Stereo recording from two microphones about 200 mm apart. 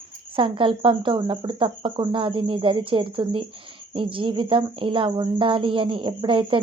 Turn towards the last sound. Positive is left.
turn(degrees=-25)  # may be behind; listen again after turning